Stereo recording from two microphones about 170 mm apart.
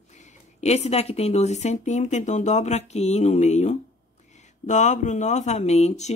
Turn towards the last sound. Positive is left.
turn(degrees=40)  # may be behind; listen again after turning